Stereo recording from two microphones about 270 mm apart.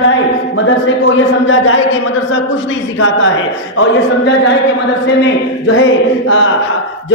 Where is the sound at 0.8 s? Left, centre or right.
Left.